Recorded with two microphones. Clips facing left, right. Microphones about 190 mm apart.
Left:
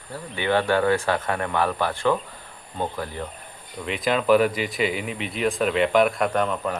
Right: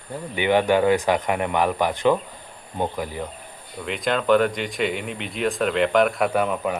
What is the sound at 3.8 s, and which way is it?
Speech, centre (ahead or behind).